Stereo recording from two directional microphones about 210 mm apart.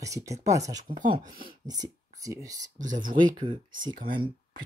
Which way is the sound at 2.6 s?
35° right (ahead or behind).